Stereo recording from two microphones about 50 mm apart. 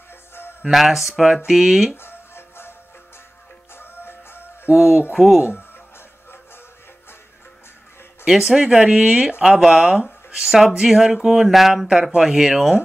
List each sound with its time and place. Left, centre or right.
0.1 s a sound: left
0.7 s speech: centre
2.0 s music: left
3.7 s music: left
4.7 s speech: centre
5.1 s speech: centre
5.4 s music: left
8.3 s speech: centre